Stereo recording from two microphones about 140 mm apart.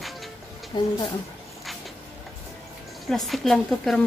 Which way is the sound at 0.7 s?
30° left (ahead or behind).